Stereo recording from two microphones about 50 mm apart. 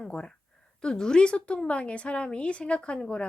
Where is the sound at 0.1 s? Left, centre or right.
Left.